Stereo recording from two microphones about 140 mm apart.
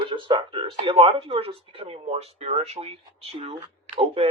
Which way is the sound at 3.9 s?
55° right (ahead or behind).